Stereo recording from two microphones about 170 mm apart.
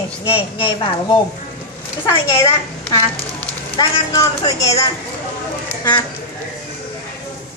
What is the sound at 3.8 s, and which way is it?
A woman's voice, 20° left (ahead or behind).